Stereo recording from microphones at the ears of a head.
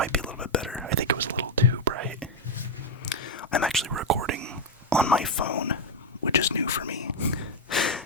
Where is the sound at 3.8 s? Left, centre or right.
Right.